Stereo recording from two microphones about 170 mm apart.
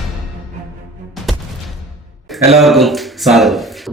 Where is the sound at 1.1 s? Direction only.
Centre (ahead or behind).